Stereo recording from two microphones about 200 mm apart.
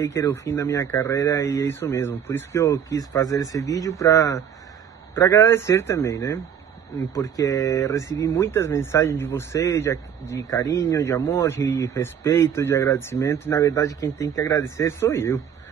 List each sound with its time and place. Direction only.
0.0 s speech: 15° left (ahead or behind)